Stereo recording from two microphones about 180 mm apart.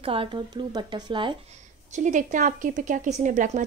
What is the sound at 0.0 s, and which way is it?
Speech, 30° right (ahead or behind).